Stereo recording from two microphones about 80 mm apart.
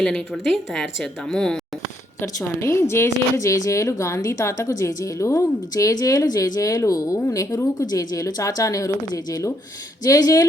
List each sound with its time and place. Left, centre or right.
0.0 s a woman's voice: centre
2.4 s a woman's voice: left